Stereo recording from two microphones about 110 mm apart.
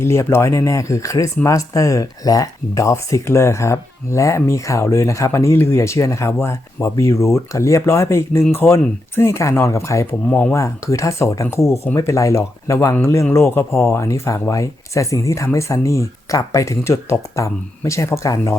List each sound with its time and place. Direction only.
0.0 s speech: 25° left (ahead or behind)
10.2 s speech: 15° left (ahead or behind)
10.5 s speech: 30° left (ahead or behind)